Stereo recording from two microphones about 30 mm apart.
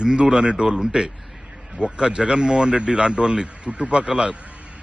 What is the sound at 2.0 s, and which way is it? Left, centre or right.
A man's voice, right.